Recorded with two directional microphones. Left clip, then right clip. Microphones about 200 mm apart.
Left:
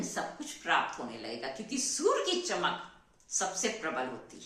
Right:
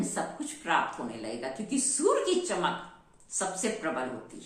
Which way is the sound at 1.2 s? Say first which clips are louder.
Right 3 dB; 10° left (ahead or behind).